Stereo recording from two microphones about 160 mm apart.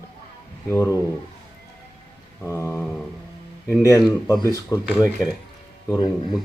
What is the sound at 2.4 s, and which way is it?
Speech, 20° left (ahead or behind).